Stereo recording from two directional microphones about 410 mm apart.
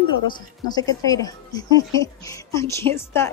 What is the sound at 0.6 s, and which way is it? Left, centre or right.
Speech, centre.